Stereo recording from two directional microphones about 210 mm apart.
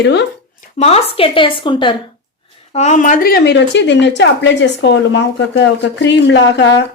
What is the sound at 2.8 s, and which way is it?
A woman's voice, 35° left (ahead or behind).